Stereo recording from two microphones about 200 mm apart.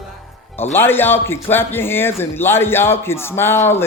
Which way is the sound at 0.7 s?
10° left (ahead or behind).